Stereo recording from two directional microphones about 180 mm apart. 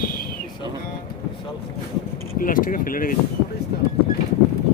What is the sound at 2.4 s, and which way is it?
Speech, 50° left (ahead or behind).